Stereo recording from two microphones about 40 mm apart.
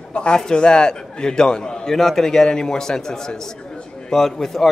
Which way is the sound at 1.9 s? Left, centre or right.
Centre.